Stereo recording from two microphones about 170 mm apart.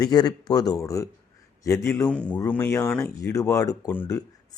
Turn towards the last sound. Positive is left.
turn(degrees=15)  # may be behind; listen again after turning